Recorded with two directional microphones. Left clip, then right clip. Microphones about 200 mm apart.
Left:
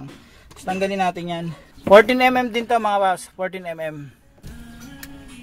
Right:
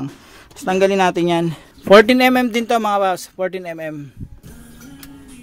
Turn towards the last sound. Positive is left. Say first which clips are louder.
# right 2 dB
turn(degrees=-30)  # may be behind; listen again after turning